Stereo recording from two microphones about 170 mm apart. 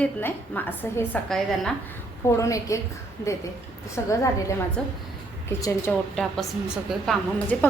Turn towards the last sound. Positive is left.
turn(degrees=10)  # may be behind; listen again after turning